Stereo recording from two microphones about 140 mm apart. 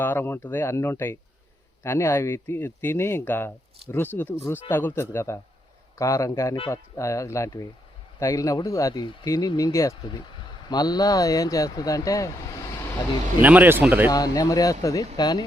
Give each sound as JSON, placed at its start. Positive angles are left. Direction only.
{"t": 0.0, "sound": "speech", "side_deg": 15}
{"t": 13.4, "sound": "speech", "side_deg": -10}
{"t": 14.1, "sound": "speech", "side_deg": 25}